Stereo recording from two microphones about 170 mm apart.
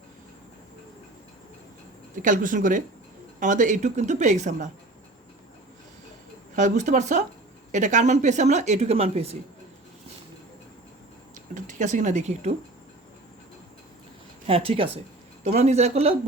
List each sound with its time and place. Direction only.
2.2 s speech: 50° right (ahead or behind)
6.6 s speech: 45° right (ahead or behind)
11.5 s speech: 45° right (ahead or behind)
14.4 s a man's voice: 35° right (ahead or behind)